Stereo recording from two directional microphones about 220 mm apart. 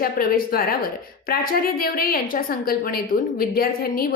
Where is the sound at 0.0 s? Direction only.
40° left (ahead or behind).